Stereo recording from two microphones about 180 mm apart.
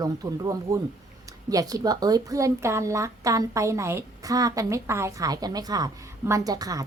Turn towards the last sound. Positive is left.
turn(degrees=-20)  # may be behind; listen again after turning